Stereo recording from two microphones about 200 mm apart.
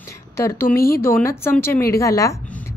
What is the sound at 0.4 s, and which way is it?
A woman's voice, 15° left (ahead or behind).